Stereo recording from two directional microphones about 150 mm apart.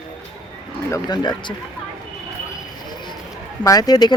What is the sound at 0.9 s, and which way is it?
Speech, 30° left (ahead or behind).